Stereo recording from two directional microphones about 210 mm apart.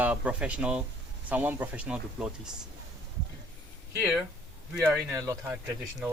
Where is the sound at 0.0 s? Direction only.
5° right (ahead or behind).